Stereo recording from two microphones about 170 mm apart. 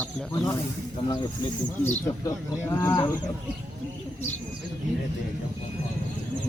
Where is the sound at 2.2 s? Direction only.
15° left (ahead or behind).